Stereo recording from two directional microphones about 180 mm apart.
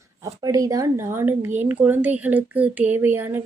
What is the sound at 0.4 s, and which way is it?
A woman's voice, 20° right (ahead or behind).